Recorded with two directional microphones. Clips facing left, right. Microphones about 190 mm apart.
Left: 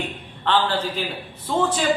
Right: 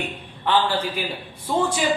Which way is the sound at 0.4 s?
10° right (ahead or behind).